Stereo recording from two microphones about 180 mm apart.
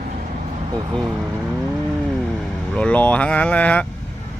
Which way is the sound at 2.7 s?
5° left (ahead or behind).